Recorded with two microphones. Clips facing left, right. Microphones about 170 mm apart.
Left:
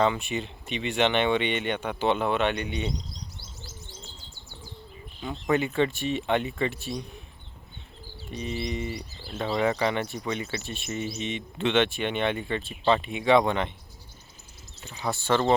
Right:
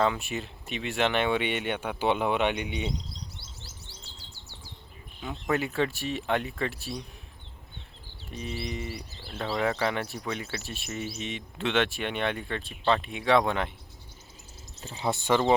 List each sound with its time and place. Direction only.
0.0 s speech: centre (ahead or behind)
5.2 s speech: centre (ahead or behind)
8.4 s speech: centre (ahead or behind)
14.8 s speech: 35° right (ahead or behind)
15.0 s speech: 20° right (ahead or behind)